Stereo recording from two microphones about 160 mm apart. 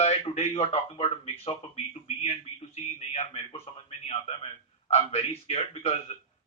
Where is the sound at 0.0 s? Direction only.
40° left (ahead or behind).